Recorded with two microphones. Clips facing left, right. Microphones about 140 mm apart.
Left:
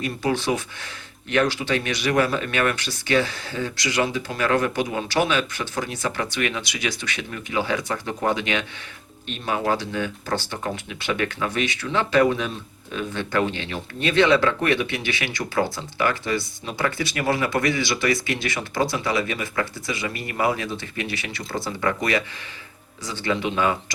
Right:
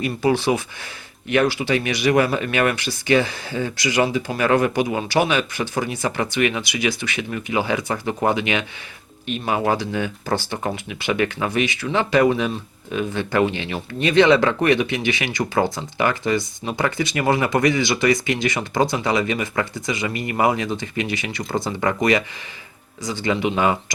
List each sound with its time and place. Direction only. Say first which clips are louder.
0.0 s speech: right 4 dB; 10° right (ahead or behind)